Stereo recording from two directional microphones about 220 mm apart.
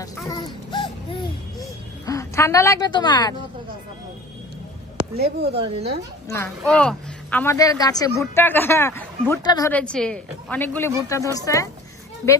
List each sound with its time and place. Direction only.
0.3 s a sound: 20° left (ahead or behind)
2.0 s a woman's voice: 15° left (ahead or behind)
5.1 s speech: 45° right (ahead or behind)
5.5 s a woman's voice: 25° right (ahead or behind)
6.2 s a woman's voice: 10° left (ahead or behind)
9.7 s a woman's voice: 5° left (ahead or behind)